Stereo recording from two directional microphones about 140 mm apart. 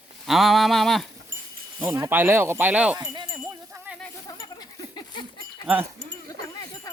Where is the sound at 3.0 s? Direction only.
30° right (ahead or behind).